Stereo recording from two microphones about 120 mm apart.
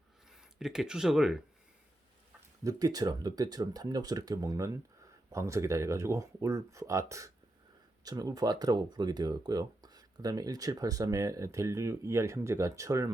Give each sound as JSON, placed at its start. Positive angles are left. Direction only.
{"t": 0.3, "sound": "speech", "side_deg": -5}
{"t": 2.6, "sound": "speech", "side_deg": -30}